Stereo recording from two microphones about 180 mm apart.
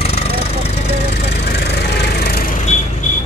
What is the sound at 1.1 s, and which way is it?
Vehicle, 65° left (ahead or behind).